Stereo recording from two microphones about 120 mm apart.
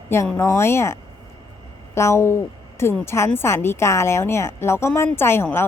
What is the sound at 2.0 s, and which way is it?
A woman's voice, 25° left (ahead or behind).